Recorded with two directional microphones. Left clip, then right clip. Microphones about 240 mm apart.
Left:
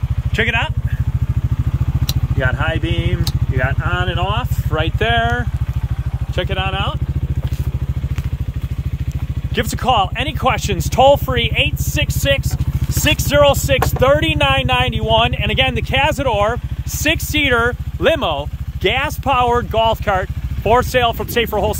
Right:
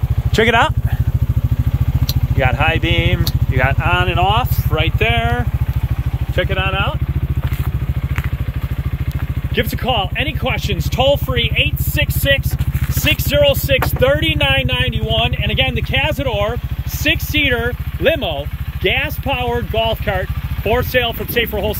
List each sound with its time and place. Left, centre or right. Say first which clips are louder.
0.4 s speech: right 5 dB; right
2.3 s speech: right 4 dB; centre
4.0 s speech: right 5 dB; centre
9.6 s speech: left 2 dB; centre